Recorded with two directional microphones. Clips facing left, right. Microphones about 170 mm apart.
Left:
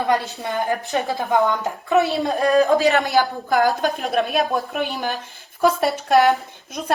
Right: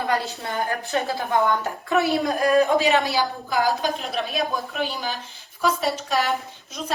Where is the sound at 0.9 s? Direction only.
20° left (ahead or behind); by 2.8 s 35° left (ahead or behind).